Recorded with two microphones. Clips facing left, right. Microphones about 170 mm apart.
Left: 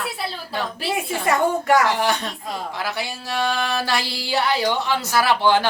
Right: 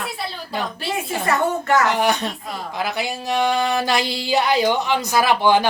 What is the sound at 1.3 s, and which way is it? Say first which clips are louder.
Speech: left 1 dB; 15° left (ahead or behind).